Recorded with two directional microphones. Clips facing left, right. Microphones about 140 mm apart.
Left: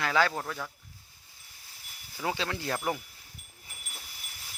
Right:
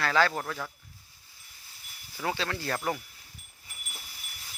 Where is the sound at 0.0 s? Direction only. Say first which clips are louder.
Right 1 dB; 10° left (ahead or behind).